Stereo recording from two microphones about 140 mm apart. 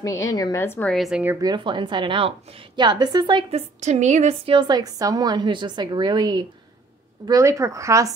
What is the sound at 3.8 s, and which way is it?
A woman's voice, 55° right (ahead or behind).